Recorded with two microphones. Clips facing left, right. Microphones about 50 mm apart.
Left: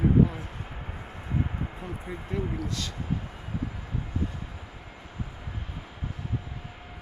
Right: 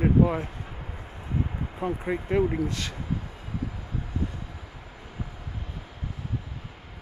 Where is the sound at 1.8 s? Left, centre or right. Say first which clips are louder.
Right 8 dB; right.